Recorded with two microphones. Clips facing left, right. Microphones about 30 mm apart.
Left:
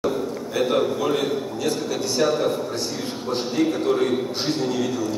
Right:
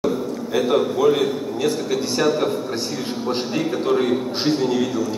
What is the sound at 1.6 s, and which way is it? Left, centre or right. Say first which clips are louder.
Speech: right 6 dB; right.